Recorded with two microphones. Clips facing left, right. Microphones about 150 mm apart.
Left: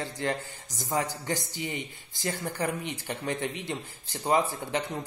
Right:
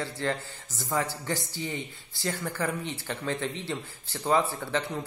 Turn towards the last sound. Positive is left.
turn(degrees=15)  # may be behind; listen again after turning